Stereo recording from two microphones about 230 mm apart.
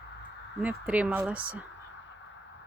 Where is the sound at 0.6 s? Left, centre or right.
Centre.